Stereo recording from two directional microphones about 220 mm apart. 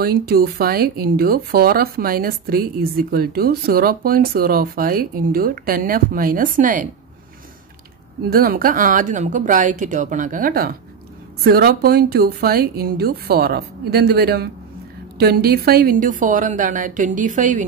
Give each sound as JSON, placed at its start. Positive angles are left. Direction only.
{"t": 0.0, "sound": "speech", "side_deg": -45}
{"t": 8.3, "sound": "a woman's voice", "side_deg": -40}